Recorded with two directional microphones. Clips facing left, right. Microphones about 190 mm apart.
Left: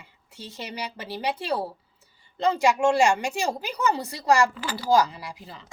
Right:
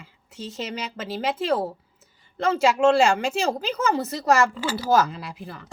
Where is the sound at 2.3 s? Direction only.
15° left (ahead or behind).